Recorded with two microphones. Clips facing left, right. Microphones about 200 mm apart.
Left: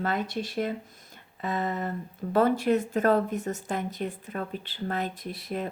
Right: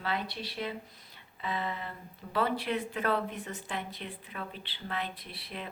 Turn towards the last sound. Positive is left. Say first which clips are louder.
# left 10 dB
turn(degrees=45)  # may be behind; listen again after turning